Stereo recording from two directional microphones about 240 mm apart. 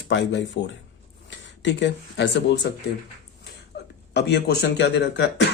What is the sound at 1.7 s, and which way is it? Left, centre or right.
Speech, left.